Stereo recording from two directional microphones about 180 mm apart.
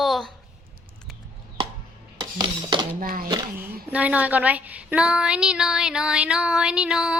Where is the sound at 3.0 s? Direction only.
55° right (ahead or behind).